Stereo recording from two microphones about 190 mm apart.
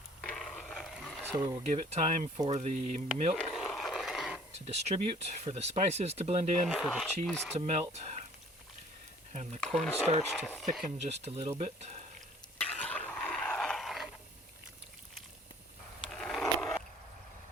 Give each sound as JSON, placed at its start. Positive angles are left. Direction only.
{"t": 0.2, "sound": "a sound", "side_deg": 0}
{"t": 1.4, "sound": "speech", "side_deg": -20}
{"t": 1.7, "sound": "speech", "side_deg": -35}
{"t": 3.5, "sound": "a sound", "side_deg": 0}
{"t": 4.6, "sound": "speech", "side_deg": -35}
{"t": 6.7, "sound": "speech", "side_deg": 0}
{"t": 7.5, "sound": "speech", "side_deg": -35}
{"t": 9.3, "sound": "speech", "side_deg": -35}
{"t": 9.6, "sound": "speech", "side_deg": 5}
{"t": 11.0, "sound": "speech", "side_deg": -35}
{"t": 12.5, "sound": "a sound", "side_deg": 5}
{"t": 16.1, "sound": "skateboard", "side_deg": 0}